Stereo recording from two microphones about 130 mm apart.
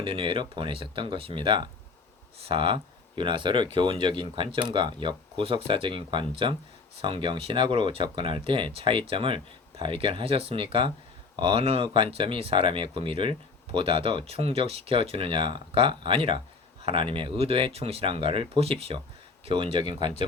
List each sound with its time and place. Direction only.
0.0 s speech: 40° right (ahead or behind)